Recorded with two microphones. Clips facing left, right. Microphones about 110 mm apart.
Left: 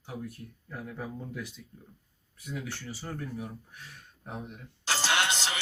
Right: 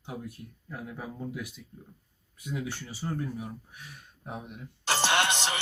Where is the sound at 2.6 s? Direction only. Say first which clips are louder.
Right 3 dB; 15° right (ahead or behind).